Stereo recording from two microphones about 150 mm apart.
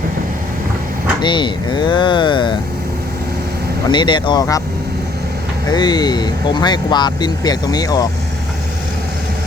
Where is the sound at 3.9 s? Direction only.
30° left (ahead or behind).